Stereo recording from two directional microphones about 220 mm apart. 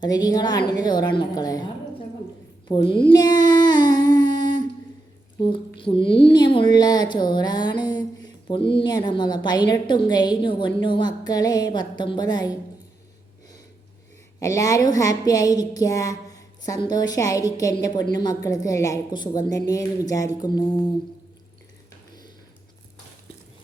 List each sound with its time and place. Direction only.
0.0 s a woman's voice: 15° left (ahead or behind)
2.6 s speech: 20° left (ahead or behind)
3.1 s child singing: 20° left (ahead or behind)
5.4 s speech: 20° left (ahead or behind)
14.3 s a woman's voice: 15° left (ahead or behind)